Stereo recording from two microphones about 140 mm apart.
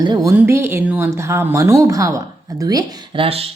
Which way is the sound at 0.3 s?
15° right (ahead or behind).